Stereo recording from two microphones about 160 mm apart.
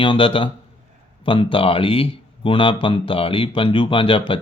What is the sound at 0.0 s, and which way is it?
Speech, 35° left (ahead or behind).